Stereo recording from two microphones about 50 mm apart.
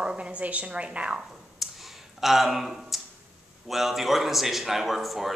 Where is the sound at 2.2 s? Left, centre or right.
Centre.